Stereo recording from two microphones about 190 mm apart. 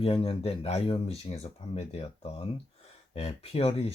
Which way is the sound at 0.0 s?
30° left (ahead or behind).